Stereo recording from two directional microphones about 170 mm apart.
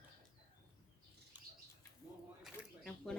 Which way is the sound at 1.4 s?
10° right (ahead or behind).